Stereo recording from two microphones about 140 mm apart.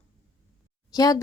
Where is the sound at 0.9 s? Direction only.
25° left (ahead or behind).